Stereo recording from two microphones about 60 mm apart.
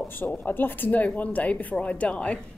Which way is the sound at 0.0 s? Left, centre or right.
Left.